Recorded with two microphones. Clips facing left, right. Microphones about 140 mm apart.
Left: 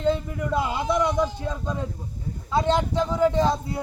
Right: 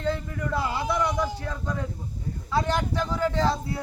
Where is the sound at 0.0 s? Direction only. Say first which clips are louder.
Left 4 dB; 20° left (ahead or behind).